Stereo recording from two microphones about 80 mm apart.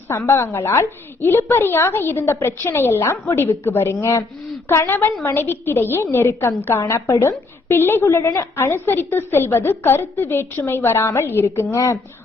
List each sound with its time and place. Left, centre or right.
0.1 s a woman's voice: left
8.0 s a woman's voice: left